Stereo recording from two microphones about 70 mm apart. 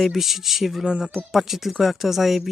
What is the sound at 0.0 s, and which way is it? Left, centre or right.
Speech, centre.